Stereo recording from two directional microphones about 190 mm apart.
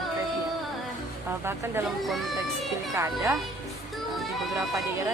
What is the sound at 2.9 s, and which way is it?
Speech, 15° right (ahead or behind).